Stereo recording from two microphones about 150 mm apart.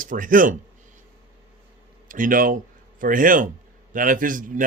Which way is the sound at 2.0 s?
65° right (ahead or behind).